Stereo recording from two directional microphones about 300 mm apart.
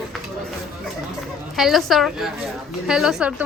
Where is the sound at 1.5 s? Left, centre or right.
Centre.